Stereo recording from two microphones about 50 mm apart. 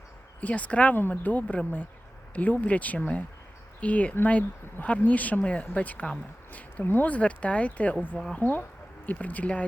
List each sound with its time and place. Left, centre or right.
0.4 s speech: left
0.9 s speech: left
6.5 s a sound: left
6.8 s speech: left